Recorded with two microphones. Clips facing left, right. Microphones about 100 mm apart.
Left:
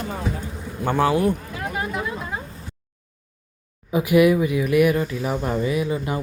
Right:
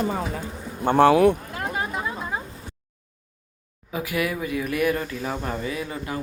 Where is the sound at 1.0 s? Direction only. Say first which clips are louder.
Right 5 dB; 80° right.